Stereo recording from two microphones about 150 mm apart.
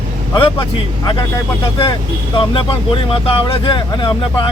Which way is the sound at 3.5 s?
30° left (ahead or behind).